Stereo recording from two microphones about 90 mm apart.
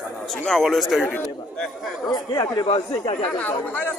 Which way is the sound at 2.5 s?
75° left (ahead or behind).